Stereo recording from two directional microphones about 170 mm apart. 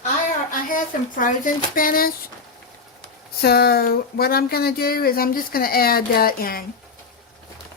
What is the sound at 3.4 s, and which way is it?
Speech, 65° left (ahead or behind).